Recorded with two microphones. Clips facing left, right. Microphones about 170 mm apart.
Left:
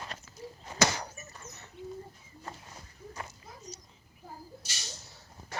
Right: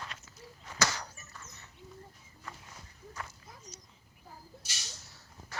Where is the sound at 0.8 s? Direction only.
20° left (ahead or behind).